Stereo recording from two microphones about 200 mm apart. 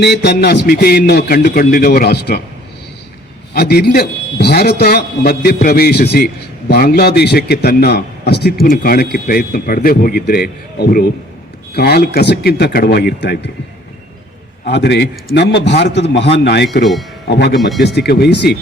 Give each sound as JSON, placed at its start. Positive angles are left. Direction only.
{"t": 0.0, "sound": "speech", "side_deg": 60}
{"t": 3.5, "sound": "speech", "side_deg": 55}
{"t": 14.7, "sound": "a man's voice", "side_deg": 60}